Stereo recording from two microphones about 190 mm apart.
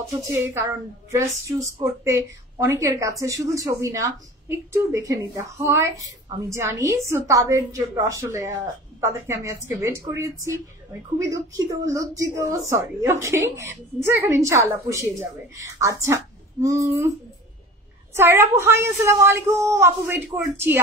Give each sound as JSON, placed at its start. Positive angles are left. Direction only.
{"t": 0.3, "sound": "a woman's voice", "side_deg": -15}
{"t": 18.1, "sound": "a woman's voice", "side_deg": -10}